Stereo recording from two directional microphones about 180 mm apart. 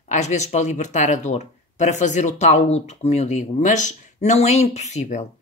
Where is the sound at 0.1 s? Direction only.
40° left (ahead or behind).